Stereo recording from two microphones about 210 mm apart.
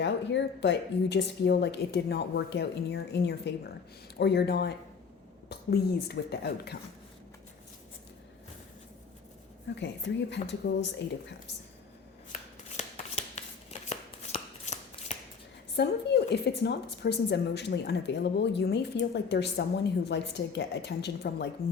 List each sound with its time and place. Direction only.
0.0 s a woman's voice: 55° left (ahead or behind)
9.7 s speech: 55° left (ahead or behind)
12.3 s shuffling cards: 30° left (ahead or behind)
15.7 s a woman's voice: 50° left (ahead or behind)